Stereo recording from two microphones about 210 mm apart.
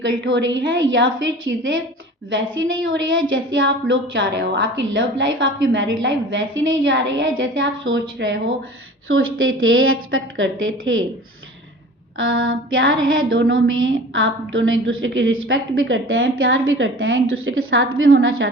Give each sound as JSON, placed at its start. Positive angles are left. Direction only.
{"t": 0.0, "sound": "a woman's voice", "side_deg": -60}
{"t": 9.0, "sound": "a woman's voice", "side_deg": -75}
{"t": 12.1, "sound": "a woman's voice", "side_deg": -70}